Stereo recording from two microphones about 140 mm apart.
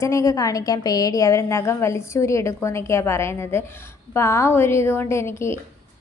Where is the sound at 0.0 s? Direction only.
20° left (ahead or behind).